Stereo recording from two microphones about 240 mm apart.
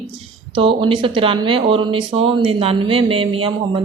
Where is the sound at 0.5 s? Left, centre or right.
Right.